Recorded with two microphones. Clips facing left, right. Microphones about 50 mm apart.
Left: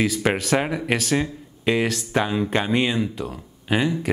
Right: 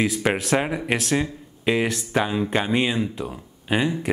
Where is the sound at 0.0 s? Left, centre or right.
Centre.